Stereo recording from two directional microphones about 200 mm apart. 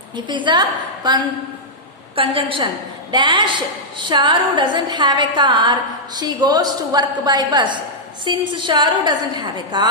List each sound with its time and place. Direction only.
0.3 s a woman's voice: 20° right (ahead or behind)